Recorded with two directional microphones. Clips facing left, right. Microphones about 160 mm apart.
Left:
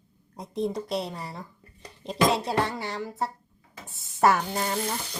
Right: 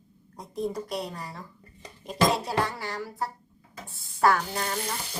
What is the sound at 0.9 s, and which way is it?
Speech, 25° left (ahead or behind).